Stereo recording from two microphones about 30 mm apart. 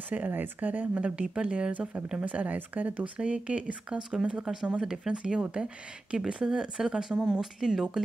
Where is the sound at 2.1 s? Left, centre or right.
Right.